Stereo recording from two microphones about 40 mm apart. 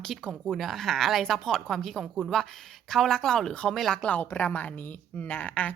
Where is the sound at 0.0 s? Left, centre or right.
Centre.